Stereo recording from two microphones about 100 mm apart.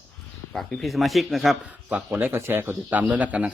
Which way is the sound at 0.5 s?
Centre (ahead or behind).